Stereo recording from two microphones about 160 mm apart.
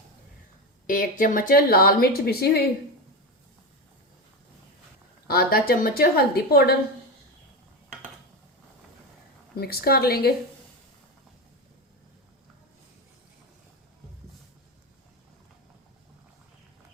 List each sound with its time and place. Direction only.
0.9 s a woman's voice: 55° left (ahead or behind); by 2.6 s 75° left (ahead or behind)
5.3 s a woman's voice: 70° left (ahead or behind)
9.6 s a woman's voice: 75° left (ahead or behind)